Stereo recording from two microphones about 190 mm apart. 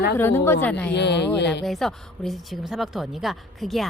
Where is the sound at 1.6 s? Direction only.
Centre (ahead or behind).